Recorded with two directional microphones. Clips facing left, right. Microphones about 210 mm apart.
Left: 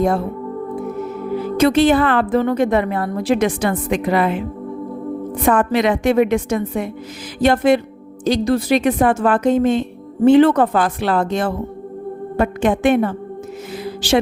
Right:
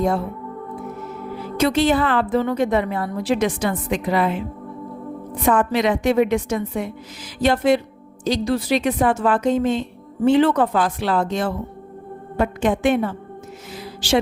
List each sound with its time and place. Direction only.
1.5 s a woman's voice: 55° left (ahead or behind)
5.4 s a woman's voice: 55° left (ahead or behind)
13.8 s music: 55° left (ahead or behind)